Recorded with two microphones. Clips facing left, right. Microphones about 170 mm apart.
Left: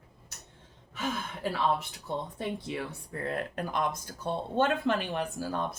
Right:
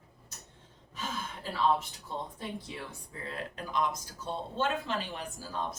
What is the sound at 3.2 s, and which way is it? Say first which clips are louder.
Speech: left 6 dB; 55° left (ahead or behind).